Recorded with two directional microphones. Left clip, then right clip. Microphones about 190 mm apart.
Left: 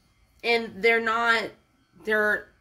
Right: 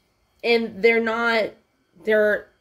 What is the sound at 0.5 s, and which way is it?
Speech, 10° left (ahead or behind).